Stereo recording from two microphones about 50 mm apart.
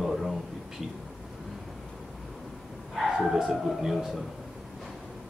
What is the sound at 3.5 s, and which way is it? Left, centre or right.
Speech, centre.